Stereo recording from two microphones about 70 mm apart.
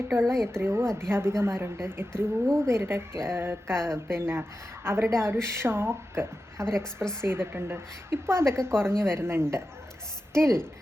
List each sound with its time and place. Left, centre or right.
0.1 s a woman's voice: right